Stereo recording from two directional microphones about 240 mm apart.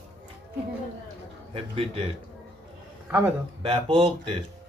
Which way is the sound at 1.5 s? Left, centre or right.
Right.